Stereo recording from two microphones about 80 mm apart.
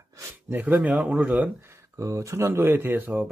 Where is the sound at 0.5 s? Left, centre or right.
Right.